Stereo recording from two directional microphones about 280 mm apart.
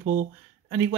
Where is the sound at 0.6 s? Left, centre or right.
Centre.